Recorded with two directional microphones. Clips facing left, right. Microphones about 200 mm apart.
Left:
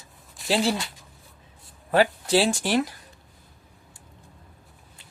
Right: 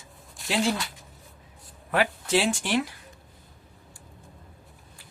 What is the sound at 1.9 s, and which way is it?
A woman's voice, 35° left (ahead or behind).